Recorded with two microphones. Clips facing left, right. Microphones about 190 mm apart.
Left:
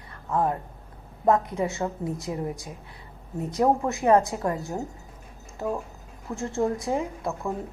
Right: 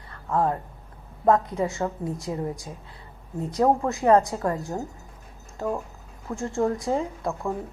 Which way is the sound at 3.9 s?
20° left (ahead or behind).